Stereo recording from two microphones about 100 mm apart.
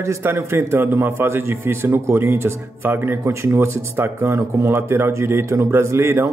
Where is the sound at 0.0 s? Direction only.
25° right (ahead or behind).